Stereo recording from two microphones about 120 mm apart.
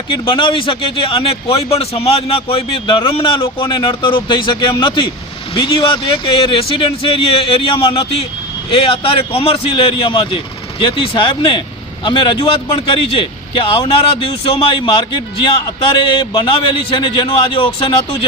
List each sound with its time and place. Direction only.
0.3 s a man's voice: 45° left (ahead or behind)